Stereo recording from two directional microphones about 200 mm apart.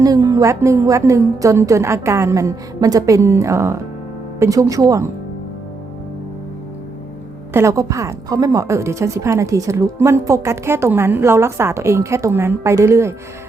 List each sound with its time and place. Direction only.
0.0 s a woman's voice: 15° right (ahead or behind)
7.5 s a woman's voice: 15° right (ahead or behind)